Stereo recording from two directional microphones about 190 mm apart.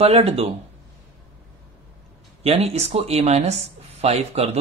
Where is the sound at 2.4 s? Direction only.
35° right (ahead or behind).